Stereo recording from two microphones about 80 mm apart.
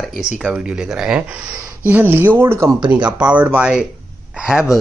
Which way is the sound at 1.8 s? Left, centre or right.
Right.